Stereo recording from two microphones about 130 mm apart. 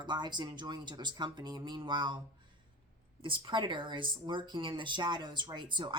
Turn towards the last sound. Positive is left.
turn(degrees=-40)  # may be behind; listen again after turning